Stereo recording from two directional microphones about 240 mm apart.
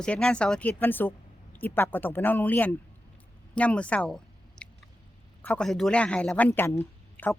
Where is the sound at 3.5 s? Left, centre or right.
Centre.